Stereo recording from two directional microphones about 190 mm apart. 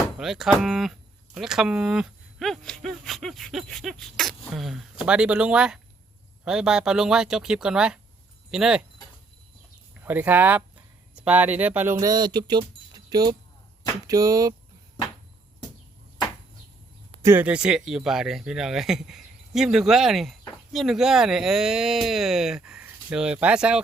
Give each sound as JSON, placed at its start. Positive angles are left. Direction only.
{"t": 0.2, "sound": "speech", "side_deg": 0}
{"t": 10.0, "sound": "speech", "side_deg": -10}
{"t": 17.2, "sound": "speech", "side_deg": -10}